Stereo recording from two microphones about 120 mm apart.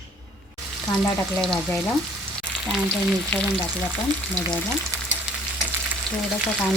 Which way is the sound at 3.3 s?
15° left (ahead or behind).